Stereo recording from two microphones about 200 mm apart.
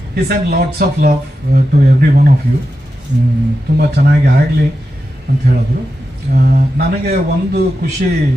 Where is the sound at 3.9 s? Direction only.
55° right (ahead or behind).